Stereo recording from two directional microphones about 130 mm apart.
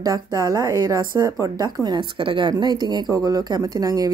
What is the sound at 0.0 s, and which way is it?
Speech, 25° right (ahead or behind).